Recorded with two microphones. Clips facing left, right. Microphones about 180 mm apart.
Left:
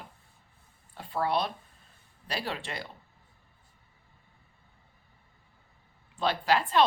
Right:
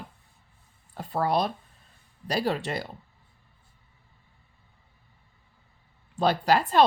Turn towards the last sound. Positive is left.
turn(degrees=-40)  # may be behind; listen again after turning